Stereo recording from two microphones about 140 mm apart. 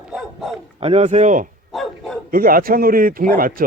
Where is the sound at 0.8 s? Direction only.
45° right (ahead or behind); by 1.5 s 65° right (ahead or behind).